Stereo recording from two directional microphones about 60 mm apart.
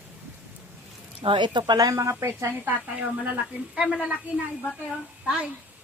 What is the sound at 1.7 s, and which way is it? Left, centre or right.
Speech, right.